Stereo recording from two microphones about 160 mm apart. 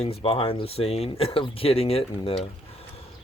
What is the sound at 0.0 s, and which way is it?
Speech, 35° left (ahead or behind).